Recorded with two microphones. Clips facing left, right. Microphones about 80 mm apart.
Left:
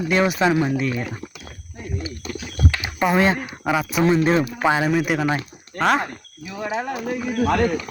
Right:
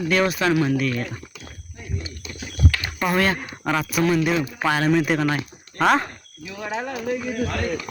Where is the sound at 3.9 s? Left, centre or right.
Left.